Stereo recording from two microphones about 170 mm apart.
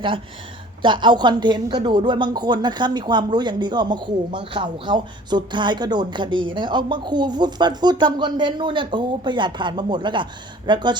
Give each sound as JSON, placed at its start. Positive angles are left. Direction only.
{"t": 0.8, "sound": "speech", "side_deg": -30}